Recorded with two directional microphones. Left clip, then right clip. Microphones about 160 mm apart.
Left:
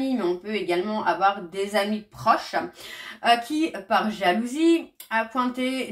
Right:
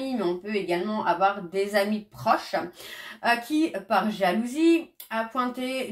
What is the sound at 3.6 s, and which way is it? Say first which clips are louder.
Speech: left 1 dB; 35° right (ahead or behind).